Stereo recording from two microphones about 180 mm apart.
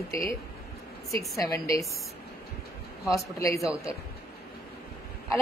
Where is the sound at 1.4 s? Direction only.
15° left (ahead or behind).